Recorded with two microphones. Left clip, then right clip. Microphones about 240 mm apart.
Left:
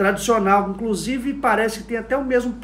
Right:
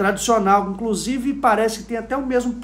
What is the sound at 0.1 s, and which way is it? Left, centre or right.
Speech, centre.